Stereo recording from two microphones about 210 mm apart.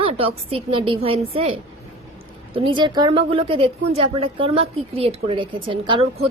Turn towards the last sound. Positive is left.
turn(degrees=-25)  # may be behind; listen again after turning